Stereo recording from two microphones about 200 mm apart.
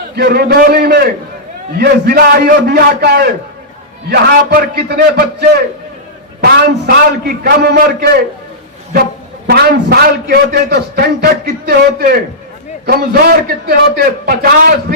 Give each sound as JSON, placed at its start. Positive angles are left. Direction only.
{"t": 0.2, "sound": "a man's voice", "side_deg": -55}
{"t": 9.5, "sound": "a man's voice", "side_deg": -50}